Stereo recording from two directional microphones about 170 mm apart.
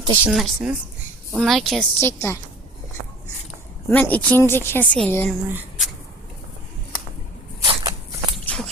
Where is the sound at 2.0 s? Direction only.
15° left (ahead or behind).